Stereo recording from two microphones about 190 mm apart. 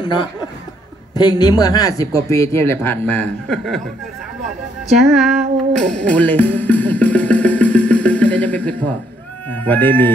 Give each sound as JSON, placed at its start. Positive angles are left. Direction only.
{"t": 0.0, "sound": "speech", "side_deg": 20}
{"t": 4.9, "sound": "music", "side_deg": 0}
{"t": 9.5, "sound": "speech", "side_deg": 10}